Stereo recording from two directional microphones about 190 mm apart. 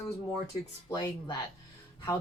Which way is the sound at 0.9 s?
20° left (ahead or behind).